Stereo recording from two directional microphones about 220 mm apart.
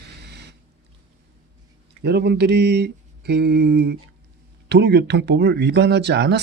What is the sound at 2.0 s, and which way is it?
Speech, 50° right (ahead or behind).